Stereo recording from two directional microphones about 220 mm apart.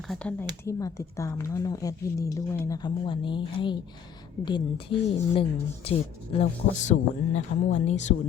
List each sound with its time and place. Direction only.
0.1 s a woman's voice: 5° left (ahead or behind); by 8.1 s 30° left (ahead or behind)